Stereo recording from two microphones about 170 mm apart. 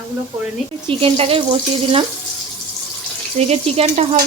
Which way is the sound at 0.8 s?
35° right (ahead or behind).